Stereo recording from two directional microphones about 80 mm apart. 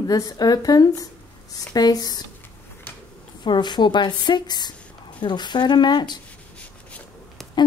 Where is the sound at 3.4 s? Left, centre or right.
Left.